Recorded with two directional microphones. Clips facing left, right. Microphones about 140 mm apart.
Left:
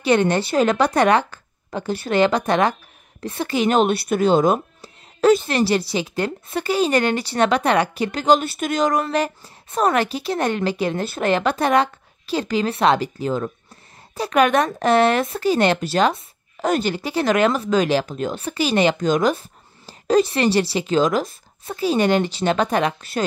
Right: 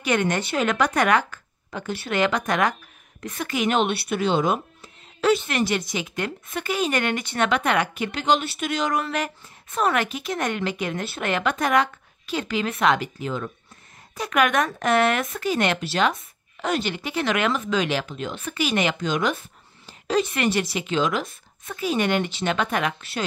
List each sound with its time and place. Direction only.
0.0 s speech: 30° left (ahead or behind)